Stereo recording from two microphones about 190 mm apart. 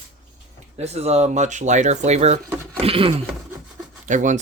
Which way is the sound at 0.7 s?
35° right (ahead or behind).